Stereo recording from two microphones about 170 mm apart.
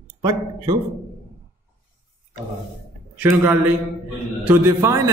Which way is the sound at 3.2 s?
10° right (ahead or behind).